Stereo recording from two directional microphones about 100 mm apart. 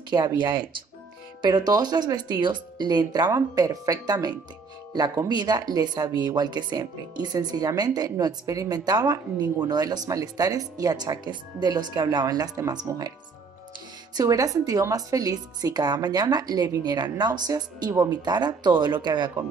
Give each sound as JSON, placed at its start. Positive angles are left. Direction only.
{"t": 0.1, "sound": "speech", "side_deg": -45}
{"t": 14.1, "sound": "speech", "side_deg": -35}